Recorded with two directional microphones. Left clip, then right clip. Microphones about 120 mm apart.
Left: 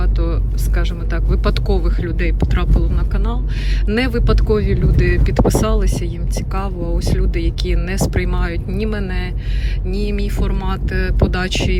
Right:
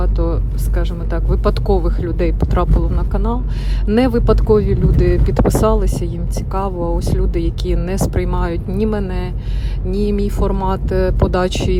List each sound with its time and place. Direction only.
0.0 s vehicle: 30° right (ahead or behind)
0.8 s speech: 30° right (ahead or behind)
5.4 s speech: 30° left (ahead or behind)
5.6 s speech: 30° right (ahead or behind)